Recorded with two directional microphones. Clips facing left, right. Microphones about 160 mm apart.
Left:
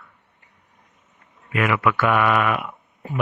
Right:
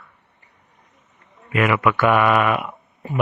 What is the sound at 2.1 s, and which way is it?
Speech, 30° right (ahead or behind).